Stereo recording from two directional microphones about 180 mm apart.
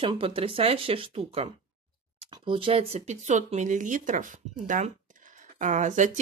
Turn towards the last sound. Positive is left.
turn(degrees=-40)  # may be behind; listen again after turning